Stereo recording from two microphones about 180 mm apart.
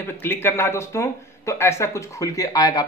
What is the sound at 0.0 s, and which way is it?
Speech, 10° left (ahead or behind).